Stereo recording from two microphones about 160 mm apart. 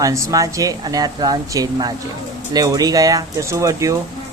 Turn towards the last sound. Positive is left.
turn(degrees=-20)  # may be behind; listen again after turning